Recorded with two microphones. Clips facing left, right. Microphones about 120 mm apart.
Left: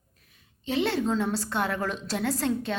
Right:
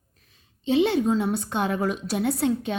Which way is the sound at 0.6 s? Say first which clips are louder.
Right 5 dB; 20° right (ahead or behind).